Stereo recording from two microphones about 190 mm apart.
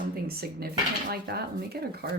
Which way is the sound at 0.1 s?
55° right (ahead or behind).